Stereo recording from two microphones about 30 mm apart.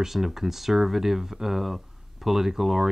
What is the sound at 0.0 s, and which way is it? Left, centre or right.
Speech, centre.